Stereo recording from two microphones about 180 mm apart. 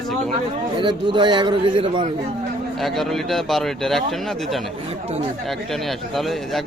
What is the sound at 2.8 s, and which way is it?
Speech, centre (ahead or behind).